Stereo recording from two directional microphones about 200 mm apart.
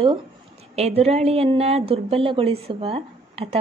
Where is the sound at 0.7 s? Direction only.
30° right (ahead or behind).